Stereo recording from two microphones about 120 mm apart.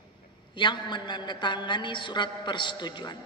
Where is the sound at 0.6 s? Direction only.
40° left (ahead or behind).